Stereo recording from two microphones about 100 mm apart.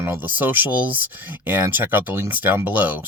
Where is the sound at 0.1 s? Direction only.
20° right (ahead or behind).